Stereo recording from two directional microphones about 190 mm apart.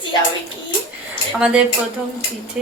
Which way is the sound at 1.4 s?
5° right (ahead or behind).